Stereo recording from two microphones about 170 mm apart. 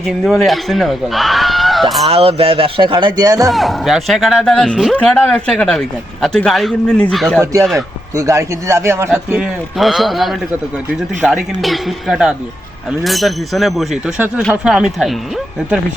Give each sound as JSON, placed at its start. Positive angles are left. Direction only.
{"t": 0.0, "sound": "speech", "side_deg": 0}
{"t": 2.0, "sound": "speech", "side_deg": -35}
{"t": 3.5, "sound": "a man's voice", "side_deg": 0}
{"t": 8.1, "sound": "a man's voice", "side_deg": -15}
{"t": 9.3, "sound": "a man's voice", "side_deg": -5}